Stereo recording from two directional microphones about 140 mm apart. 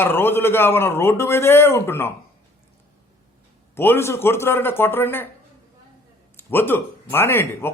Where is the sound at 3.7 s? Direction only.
15° left (ahead or behind).